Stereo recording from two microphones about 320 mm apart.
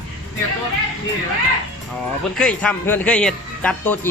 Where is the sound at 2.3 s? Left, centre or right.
Centre.